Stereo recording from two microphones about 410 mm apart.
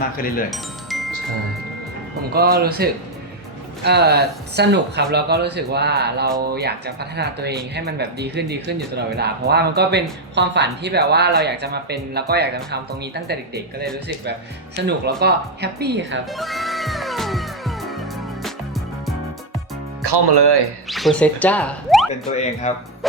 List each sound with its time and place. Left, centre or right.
0.0 s speech: left
0.5 s chime: centre
2.3 s speech: right
16.3 s music: centre
20.0 s speech: right
20.8 s speech: centre
22.7 s a man's voice: centre